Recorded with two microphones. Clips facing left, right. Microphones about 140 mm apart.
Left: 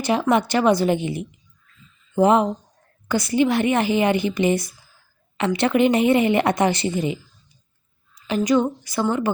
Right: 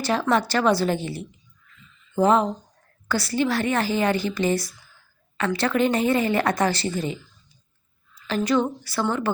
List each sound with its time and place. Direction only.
0.0 s a woman's voice: 15° left (ahead or behind)